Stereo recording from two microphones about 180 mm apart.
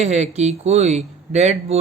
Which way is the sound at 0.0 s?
40° right (ahead or behind).